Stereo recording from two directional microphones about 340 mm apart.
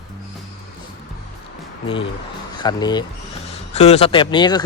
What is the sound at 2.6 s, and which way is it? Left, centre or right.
Speech, centre.